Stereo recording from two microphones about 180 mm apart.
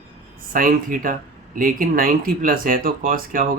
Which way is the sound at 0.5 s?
50° right (ahead or behind).